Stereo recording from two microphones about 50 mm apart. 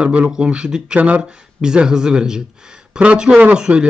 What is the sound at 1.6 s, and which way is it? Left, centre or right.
Speech, centre.